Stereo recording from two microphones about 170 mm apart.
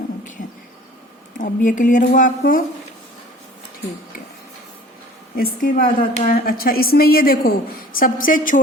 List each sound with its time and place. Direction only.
0.4 s a sound: 45° left (ahead or behind)
1.4 s speech: 50° left (ahead or behind)
5.4 s a woman's voice: 55° left (ahead or behind)